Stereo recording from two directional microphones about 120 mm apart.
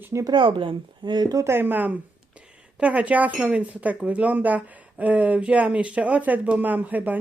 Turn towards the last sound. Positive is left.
turn(degrees=-15)  # may be behind; listen again after turning